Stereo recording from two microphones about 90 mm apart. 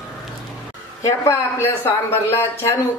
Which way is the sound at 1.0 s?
30° left (ahead or behind).